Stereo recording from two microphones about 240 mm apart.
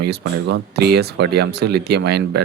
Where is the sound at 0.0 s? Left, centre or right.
Right.